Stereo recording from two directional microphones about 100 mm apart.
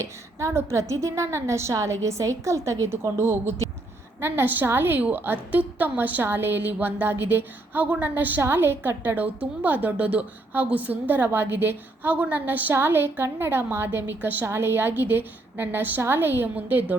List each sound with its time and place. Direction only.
0.0 s a woman's voice: 30° right (ahead or behind)